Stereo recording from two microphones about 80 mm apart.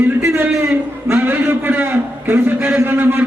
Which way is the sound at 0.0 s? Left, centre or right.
Right.